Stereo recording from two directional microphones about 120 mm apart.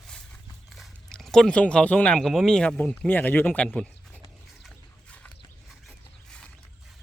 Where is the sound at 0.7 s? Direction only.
Centre (ahead or behind).